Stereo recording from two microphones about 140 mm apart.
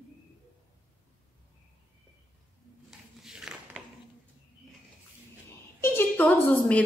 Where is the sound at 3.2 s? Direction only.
5° right (ahead or behind).